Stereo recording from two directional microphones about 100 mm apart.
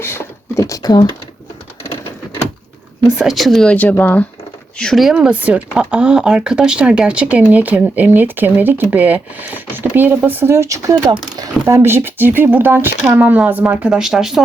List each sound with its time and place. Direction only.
0.0 s a sound: 25° left (ahead or behind); by 1.0 s 40° left (ahead or behind)
3.2 s speech: centre (ahead or behind)
3.8 s speech: 15° left (ahead or behind)
4.8 s speech: centre (ahead or behind)